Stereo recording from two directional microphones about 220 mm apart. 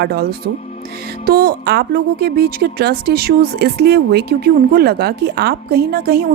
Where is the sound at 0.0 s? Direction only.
45° right (ahead or behind).